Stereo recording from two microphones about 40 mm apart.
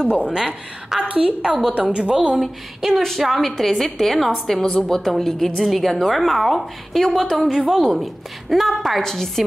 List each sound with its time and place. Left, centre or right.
0.0 s a woman's voice: right
2.3 s a woman's voice: centre